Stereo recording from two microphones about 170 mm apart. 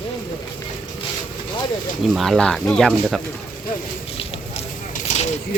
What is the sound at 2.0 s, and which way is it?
Speech, centre (ahead or behind).